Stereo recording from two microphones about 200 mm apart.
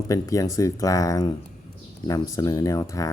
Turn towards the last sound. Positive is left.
turn(degrees=15)  # may be behind; listen again after turning